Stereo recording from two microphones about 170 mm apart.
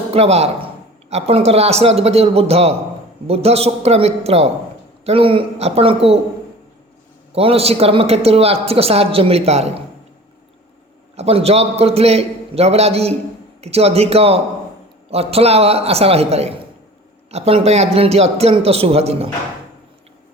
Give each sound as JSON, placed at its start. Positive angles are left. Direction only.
{"t": 0.1, "sound": "speech", "side_deg": -35}
{"t": 7.3, "sound": "speech", "side_deg": -35}
{"t": 11.2, "sound": "speech", "side_deg": -35}